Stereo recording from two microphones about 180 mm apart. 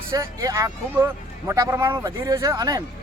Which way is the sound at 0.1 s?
15° right (ahead or behind).